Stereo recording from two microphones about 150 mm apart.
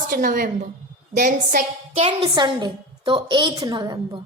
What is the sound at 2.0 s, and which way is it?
A woman's voice, 40° right (ahead or behind).